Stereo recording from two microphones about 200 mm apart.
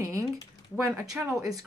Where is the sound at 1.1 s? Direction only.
5° right (ahead or behind).